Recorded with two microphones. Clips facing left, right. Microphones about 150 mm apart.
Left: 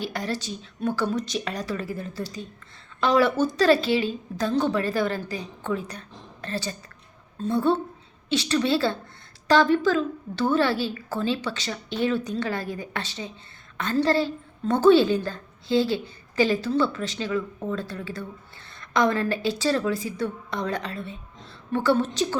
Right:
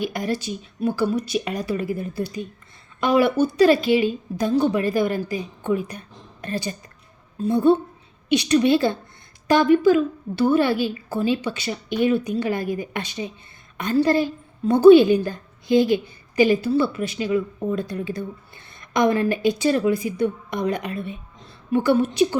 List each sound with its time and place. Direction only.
0.0 s a woman's voice: 15° right (ahead or behind)